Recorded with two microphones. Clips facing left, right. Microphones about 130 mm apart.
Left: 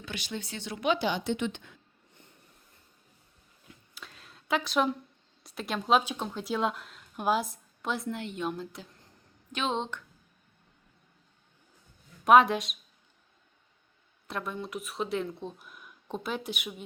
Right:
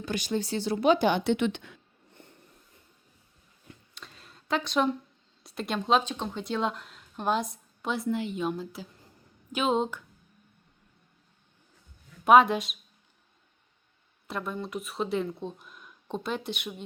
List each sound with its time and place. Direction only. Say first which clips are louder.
0.0 s speech: right 8 dB; 40° right (ahead or behind)
1.0 s a woman's voice: right 5 dB; 60° right (ahead or behind); by 1.8 s 80° right
3.7 s a sound: right 1 dB; centre (ahead or behind)
5.4 s speech: right 2 dB; centre (ahead or behind)
12.2 s speech: right 1 dB; centre (ahead or behind)
14.3 s speech: right 2 dB; centre (ahead or behind)